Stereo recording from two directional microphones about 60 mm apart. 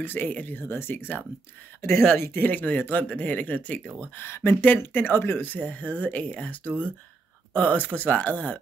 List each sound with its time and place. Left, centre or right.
0.0 s speech: left
1.8 s speech: left
2.1 s speech: left
4.2 s speech: left